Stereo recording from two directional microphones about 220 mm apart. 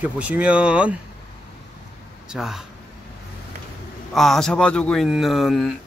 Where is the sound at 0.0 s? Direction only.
5° right (ahead or behind).